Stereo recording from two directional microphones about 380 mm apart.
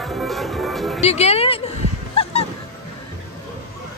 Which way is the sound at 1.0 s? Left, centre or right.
Centre.